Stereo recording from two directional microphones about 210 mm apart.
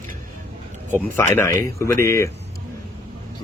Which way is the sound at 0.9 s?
10° left (ahead or behind).